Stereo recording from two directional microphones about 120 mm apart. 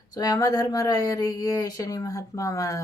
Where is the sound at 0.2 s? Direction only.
30° left (ahead or behind).